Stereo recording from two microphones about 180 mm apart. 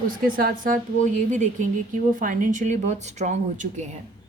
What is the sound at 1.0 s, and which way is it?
Speech, 45° right (ahead or behind).